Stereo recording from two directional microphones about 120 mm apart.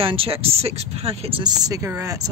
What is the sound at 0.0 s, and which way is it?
Speech, 50° right (ahead or behind).